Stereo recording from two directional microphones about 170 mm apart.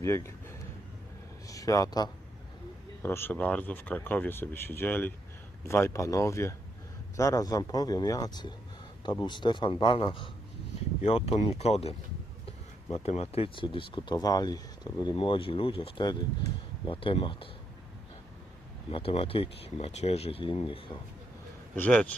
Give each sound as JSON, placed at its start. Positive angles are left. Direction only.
{"t": 0.0, "sound": "speech", "side_deg": 15}
{"t": 18.9, "sound": "speech", "side_deg": 35}
{"t": 21.8, "sound": "speech", "side_deg": 5}